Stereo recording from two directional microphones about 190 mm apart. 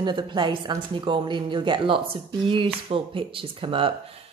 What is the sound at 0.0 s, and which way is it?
A woman's voice, 25° right (ahead or behind).